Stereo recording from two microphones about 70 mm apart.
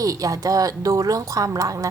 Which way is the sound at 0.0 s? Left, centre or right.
Right.